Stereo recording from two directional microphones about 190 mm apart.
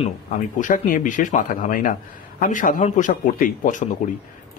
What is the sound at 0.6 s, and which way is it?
A man's voice, 45° left (ahead or behind).